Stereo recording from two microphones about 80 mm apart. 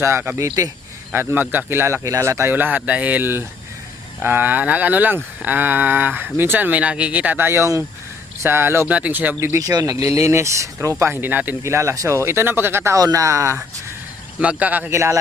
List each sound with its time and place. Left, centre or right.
0.0 s speech: right
1.1 s speech: right
2.0 s speech: right
2.5 s speech: right
8.9 s speech: centre
9.4 s speech: right
11.6 s speech: right
14.3 s speech: centre
14.8 s speech: right